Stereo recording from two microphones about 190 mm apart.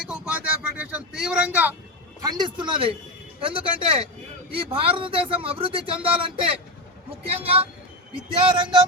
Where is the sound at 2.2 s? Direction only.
20° right (ahead or behind).